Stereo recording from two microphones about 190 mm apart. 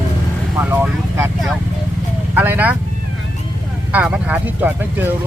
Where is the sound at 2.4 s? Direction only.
10° right (ahead or behind).